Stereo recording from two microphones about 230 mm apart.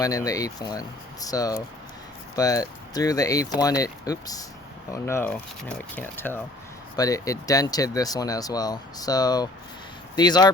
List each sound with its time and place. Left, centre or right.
0.0 s speech: centre